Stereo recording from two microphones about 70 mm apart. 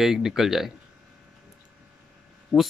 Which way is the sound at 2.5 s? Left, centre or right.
Centre.